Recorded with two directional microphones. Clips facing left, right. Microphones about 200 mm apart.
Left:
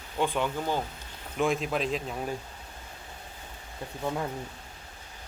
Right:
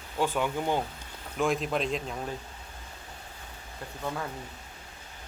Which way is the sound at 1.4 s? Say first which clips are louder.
Even; centre (ahead or behind).